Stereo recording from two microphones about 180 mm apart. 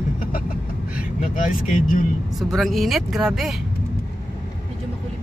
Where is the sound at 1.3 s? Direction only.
50° left (ahead or behind).